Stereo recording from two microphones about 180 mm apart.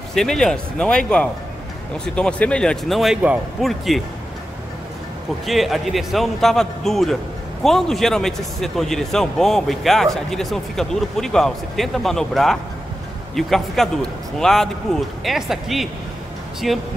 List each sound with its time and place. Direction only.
0.1 s speech: 5° left (ahead or behind)
5.5 s speech: centre (ahead or behind)